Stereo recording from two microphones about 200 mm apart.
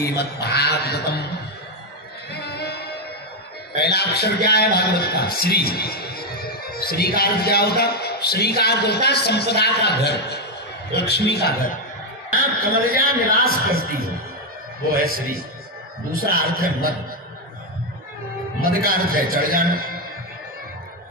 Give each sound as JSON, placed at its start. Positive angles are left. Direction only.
{"t": 0.0, "sound": "a man's voice", "side_deg": 55}
{"t": 2.3, "sound": "music", "side_deg": 55}
{"t": 3.7, "sound": "a man's voice", "side_deg": 55}
{"t": 12.3, "sound": "a man's voice", "side_deg": -45}
{"t": 13.4, "sound": "a man's voice", "side_deg": 50}
{"t": 15.0, "sound": "a man's voice", "side_deg": -45}
{"t": 18.9, "sound": "a man's voice", "side_deg": -45}